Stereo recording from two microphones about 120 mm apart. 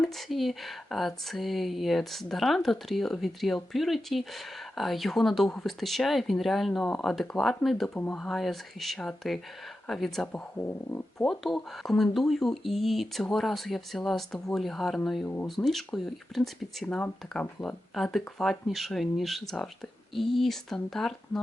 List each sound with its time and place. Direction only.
0.0 s speech: centre (ahead or behind)
7.9 s speech: 15° left (ahead or behind)
8.2 s speech: centre (ahead or behind)
10.6 s speech: 15° left (ahead or behind)
11.3 s speech: centre (ahead or behind)